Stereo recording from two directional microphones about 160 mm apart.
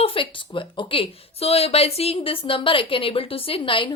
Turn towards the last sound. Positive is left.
turn(degrees=30)  # may be behind; listen again after turning